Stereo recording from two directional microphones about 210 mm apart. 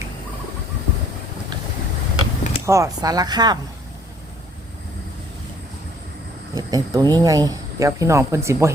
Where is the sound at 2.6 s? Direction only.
15° right (ahead or behind).